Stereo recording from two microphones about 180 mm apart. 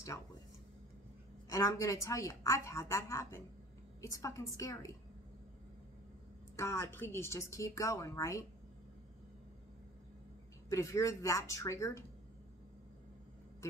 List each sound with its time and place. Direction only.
1.5 s speech: 15° left (ahead or behind)
6.5 s speech: 15° left (ahead or behind)
10.7 s speech: 15° left (ahead or behind)